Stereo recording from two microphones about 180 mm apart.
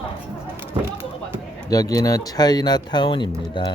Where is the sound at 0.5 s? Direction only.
10° right (ahead or behind).